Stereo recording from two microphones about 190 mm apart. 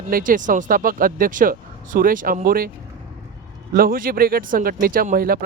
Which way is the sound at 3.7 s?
50° right (ahead or behind).